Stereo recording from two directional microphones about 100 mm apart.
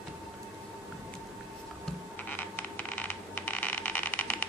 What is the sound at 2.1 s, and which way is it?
Coin, 15° left (ahead or behind).